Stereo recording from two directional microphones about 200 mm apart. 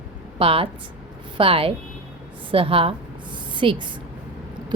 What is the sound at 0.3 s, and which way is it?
A woman's voice, 30° right (ahead or behind).